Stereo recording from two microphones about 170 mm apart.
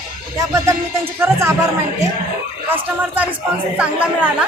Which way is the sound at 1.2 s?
15° right (ahead or behind).